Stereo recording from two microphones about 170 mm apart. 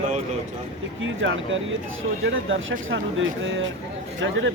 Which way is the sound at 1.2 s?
90° right.